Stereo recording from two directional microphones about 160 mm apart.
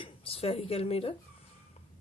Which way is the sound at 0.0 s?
35° left (ahead or behind).